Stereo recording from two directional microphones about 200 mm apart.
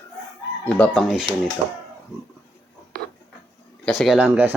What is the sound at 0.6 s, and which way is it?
Speech, 5° left (ahead or behind).